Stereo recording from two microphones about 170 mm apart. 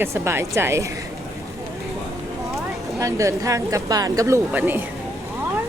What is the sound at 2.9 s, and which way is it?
A woman's voice, 20° right (ahead or behind).